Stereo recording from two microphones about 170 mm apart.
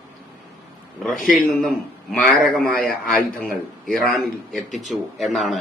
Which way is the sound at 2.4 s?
5° left (ahead or behind).